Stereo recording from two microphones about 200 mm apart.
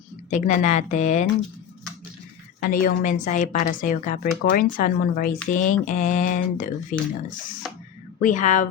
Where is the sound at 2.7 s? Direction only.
45° left (ahead or behind).